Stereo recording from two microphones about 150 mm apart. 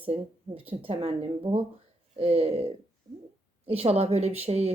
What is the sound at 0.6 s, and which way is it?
Speech, 40° right (ahead or behind).